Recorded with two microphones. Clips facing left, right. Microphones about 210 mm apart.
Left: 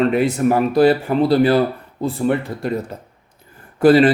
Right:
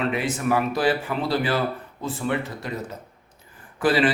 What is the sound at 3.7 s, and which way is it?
Speech, 40° left (ahead or behind).